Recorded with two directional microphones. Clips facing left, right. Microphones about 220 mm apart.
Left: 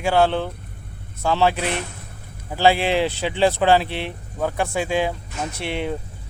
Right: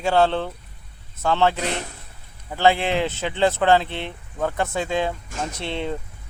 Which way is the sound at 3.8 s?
20° right (ahead or behind).